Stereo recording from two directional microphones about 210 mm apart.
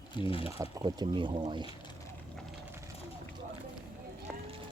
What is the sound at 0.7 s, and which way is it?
Speech, 20° right (ahead or behind).